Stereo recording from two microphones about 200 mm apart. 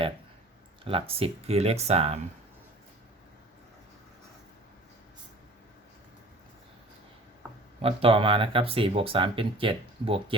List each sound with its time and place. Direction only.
0.9 s speech: 30° right (ahead or behind)
7.8 s speech: 30° right (ahead or behind)